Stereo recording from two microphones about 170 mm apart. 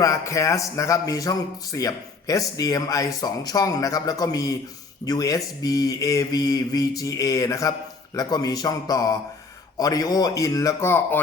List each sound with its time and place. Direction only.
0.0 s speech: 20° left (ahead or behind)